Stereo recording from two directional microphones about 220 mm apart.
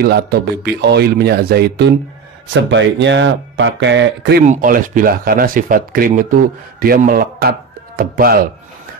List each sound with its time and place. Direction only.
0.0 s speech: 45° right (ahead or behind)
4.5 s speech: 40° right (ahead or behind)